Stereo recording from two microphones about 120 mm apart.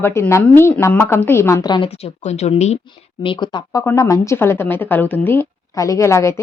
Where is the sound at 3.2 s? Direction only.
40° left (ahead or behind).